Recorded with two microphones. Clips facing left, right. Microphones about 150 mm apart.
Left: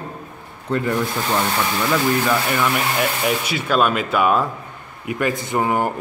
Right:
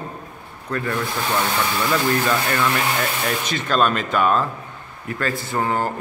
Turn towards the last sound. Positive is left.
turn(degrees=15)  # may be behind; listen again after turning